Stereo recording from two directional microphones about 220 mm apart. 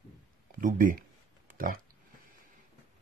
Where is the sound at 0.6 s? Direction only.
35° right (ahead or behind).